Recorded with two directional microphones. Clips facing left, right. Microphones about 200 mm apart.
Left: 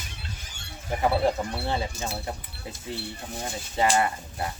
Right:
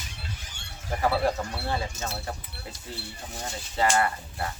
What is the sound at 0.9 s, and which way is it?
Speech, 20° left (ahead or behind).